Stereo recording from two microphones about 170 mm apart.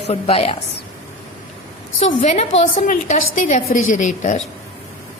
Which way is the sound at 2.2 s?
40° left (ahead or behind).